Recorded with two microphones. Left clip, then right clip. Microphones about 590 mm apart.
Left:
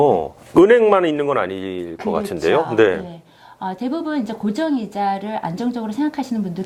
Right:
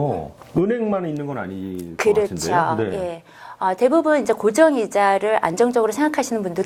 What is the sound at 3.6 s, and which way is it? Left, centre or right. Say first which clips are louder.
Speech: right 8 dB; right.